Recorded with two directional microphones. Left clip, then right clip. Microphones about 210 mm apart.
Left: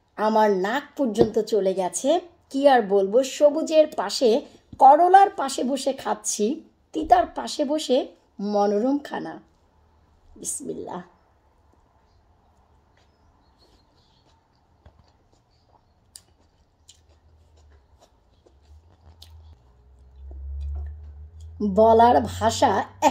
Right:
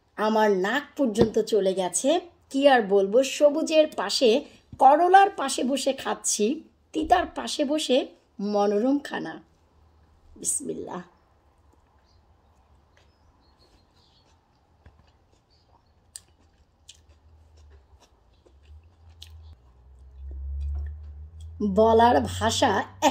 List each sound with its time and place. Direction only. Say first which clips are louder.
0.1 s a woman's voice: left 2 dB; centre (ahead or behind)
10.4 s a woman's voice: even; centre (ahead or behind)
21.5 s a woman's voice: left 3 dB; 5° left (ahead or behind)